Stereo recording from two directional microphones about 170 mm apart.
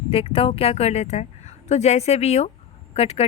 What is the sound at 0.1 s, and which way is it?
A woman's voice, 35° left (ahead or behind).